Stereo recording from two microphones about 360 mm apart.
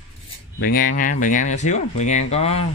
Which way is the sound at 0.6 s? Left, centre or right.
Left.